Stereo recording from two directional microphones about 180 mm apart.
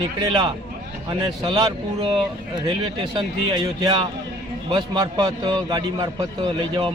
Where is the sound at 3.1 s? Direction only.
25° right (ahead or behind).